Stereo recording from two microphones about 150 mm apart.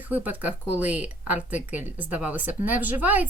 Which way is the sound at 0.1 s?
10° right (ahead or behind).